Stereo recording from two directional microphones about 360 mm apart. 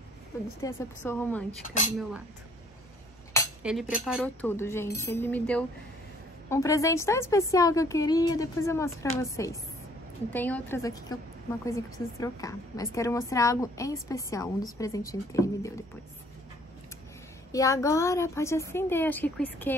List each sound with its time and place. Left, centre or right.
0.6 s speech: centre
1.6 s speech: left
3.6 s a woman's voice: centre
17.5 s a woman's voice: centre